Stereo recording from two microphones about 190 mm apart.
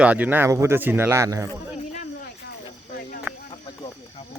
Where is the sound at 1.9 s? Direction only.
45° left (ahead or behind).